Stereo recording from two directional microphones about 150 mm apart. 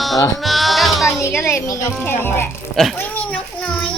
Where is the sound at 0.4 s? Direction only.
Centre (ahead or behind).